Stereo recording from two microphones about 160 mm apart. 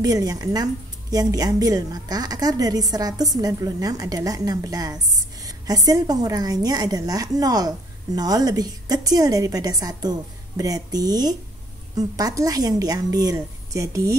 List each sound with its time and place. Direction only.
0.0 s a woman's voice: 25° right (ahead or behind)